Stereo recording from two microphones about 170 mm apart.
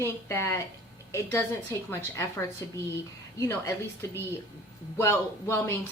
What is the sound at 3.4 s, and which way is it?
Speech, 15° left (ahead or behind).